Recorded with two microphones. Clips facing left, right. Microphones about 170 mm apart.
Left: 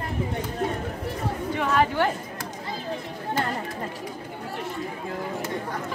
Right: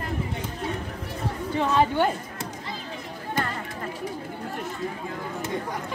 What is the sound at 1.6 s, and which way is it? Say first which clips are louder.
Speech: right 1 dB; 25° right (ahead or behind).